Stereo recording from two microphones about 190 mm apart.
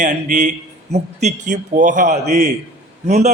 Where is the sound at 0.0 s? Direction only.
40° right (ahead or behind).